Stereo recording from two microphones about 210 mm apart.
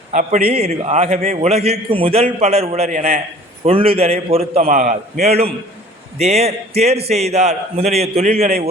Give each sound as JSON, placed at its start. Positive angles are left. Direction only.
{"t": 0.1, "sound": "a man's voice", "side_deg": -35}